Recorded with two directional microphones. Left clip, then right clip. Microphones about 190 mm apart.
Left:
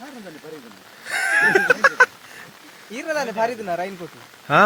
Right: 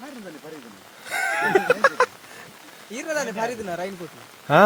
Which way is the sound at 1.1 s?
5° right (ahead or behind).